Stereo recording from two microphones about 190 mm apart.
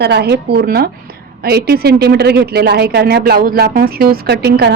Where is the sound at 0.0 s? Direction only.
60° right (ahead or behind).